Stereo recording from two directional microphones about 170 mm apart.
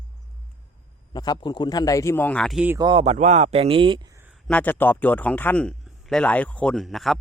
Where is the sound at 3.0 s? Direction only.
40° right (ahead or behind).